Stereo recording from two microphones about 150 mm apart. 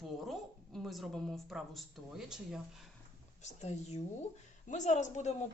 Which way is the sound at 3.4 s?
50° left (ahead or behind).